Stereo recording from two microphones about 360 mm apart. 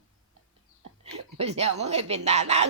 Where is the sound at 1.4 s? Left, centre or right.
Centre.